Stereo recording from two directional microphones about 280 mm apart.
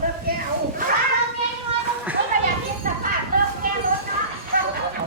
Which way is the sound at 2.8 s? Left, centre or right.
Right.